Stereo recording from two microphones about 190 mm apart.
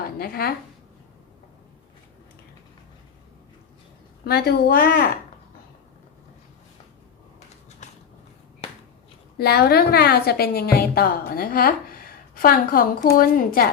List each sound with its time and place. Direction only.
0.2 s a woman's voice: 55° left (ahead or behind)
4.3 s speech: 55° left (ahead or behind)
9.4 s a woman's voice: 55° left (ahead or behind)